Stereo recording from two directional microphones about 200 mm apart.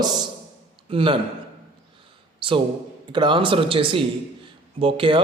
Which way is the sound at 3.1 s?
25° right (ahead or behind).